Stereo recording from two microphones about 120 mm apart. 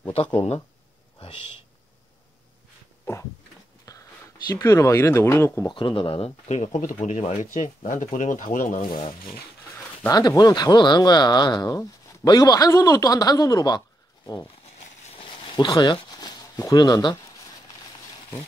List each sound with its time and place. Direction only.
3.9 s a sound: 30° left (ahead or behind)
4.5 s speech: 30° left (ahead or behind)
5.7 s speech: 45° left (ahead or behind); by 8.8 s 90° left
10.0 s speech: 30° left (ahead or behind)
15.5 s speech: 40° left (ahead or behind)